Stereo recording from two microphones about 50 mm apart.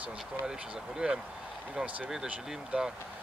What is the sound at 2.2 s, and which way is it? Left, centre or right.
Speech, centre.